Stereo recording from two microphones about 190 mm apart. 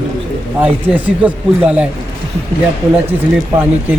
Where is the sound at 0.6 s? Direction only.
10° right (ahead or behind).